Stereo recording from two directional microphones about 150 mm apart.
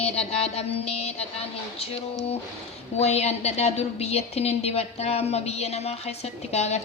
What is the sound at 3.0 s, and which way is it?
A woman's voice, 45° left (ahead or behind).